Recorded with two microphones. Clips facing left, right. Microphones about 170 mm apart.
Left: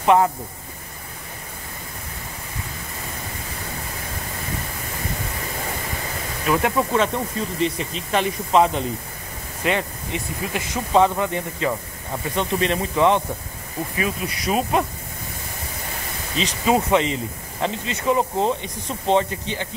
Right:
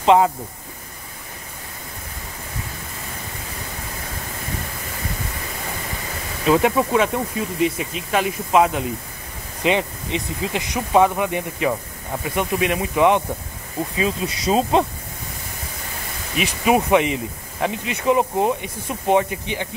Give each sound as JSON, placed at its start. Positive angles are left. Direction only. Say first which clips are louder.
{"t": 0.0, "sound": "speech", "louder": "right 2 dB", "side_deg": -20}
{"t": 6.4, "sound": "speech", "louder": "right 4 dB", "side_deg": -20}
{"t": 9.6, "sound": "speech", "louder": "right 3 dB", "side_deg": -20}
{"t": 16.3, "sound": "speech", "louder": "right 2 dB", "side_deg": -15}